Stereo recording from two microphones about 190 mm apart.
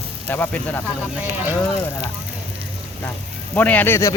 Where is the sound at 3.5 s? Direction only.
10° left (ahead or behind).